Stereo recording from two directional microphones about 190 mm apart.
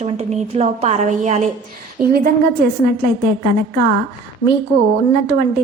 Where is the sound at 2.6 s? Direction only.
55° right (ahead or behind).